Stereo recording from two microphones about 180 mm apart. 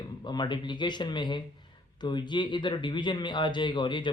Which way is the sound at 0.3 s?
25° left (ahead or behind).